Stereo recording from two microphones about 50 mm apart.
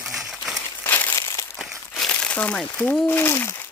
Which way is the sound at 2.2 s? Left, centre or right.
Left.